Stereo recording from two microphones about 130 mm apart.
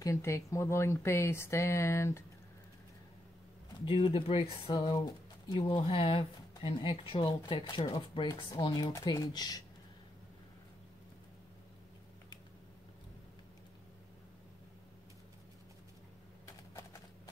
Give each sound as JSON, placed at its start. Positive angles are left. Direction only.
{"t": 0.0, "sound": "speech", "side_deg": 20}
{"t": 3.8, "sound": "speech", "side_deg": 45}